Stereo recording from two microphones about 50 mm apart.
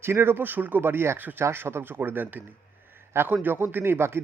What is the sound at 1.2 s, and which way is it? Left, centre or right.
Speech, right.